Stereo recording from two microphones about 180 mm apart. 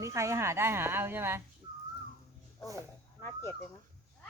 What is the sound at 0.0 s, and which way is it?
A woman's voice, 15° right (ahead or behind).